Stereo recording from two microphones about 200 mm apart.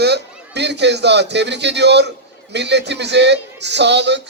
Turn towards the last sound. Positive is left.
turn(degrees=-60)  # may be behind; listen again after turning